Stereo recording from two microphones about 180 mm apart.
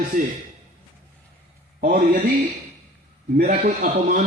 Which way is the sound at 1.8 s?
50° right (ahead or behind).